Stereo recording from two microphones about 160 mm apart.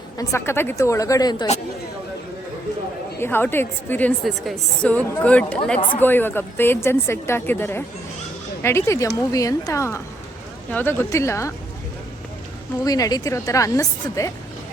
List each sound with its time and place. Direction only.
0.2 s a woman's voice: 15° left (ahead or behind)
3.2 s a woman's voice: 15° left (ahead or behind)
12.8 s a woman's voice: 25° left (ahead or behind)